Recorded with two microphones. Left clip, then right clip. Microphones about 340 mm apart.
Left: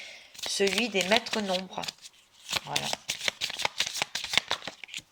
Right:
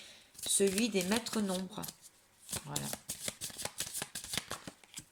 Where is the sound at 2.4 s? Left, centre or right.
Left.